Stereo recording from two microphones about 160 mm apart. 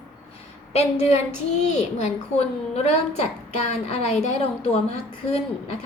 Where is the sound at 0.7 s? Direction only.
40° left (ahead or behind).